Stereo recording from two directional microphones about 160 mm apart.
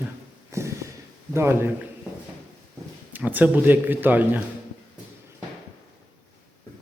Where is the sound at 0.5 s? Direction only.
20° right (ahead or behind).